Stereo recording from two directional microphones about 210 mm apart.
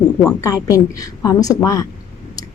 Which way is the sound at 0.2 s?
15° left (ahead or behind).